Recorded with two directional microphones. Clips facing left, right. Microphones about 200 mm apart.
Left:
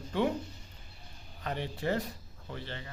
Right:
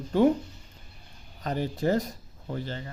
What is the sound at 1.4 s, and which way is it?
Speech, 40° right (ahead or behind).